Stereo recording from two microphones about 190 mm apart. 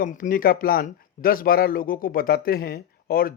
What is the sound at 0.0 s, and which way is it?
A man's voice, 45° left (ahead or behind).